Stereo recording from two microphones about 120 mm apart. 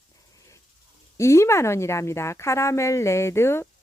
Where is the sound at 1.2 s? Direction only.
25° left (ahead or behind).